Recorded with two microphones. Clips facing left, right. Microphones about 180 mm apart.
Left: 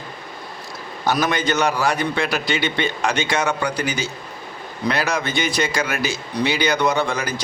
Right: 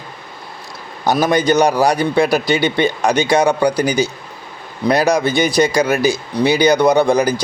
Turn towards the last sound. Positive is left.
turn(degrees=-35)  # may be behind; listen again after turning